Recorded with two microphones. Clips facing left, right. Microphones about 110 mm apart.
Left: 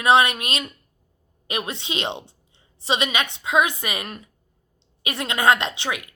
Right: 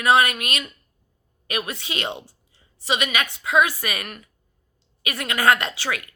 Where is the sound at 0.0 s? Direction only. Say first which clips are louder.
Left 1 dB; 25° left (ahead or behind).